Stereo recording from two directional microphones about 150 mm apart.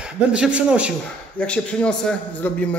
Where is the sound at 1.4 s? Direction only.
5° left (ahead or behind).